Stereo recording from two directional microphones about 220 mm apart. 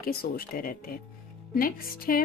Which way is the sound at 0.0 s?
40° left (ahead or behind).